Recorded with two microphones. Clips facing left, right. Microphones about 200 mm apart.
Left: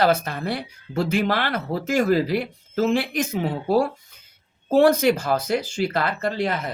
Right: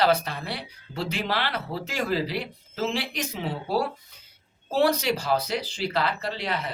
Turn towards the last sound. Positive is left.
turn(degrees=45)  # may be behind; listen again after turning